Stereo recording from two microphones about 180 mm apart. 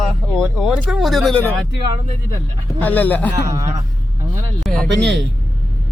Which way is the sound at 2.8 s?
10° left (ahead or behind).